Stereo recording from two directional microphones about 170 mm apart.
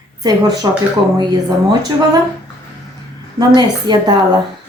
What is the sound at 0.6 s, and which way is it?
Speech, 25° right (ahead or behind).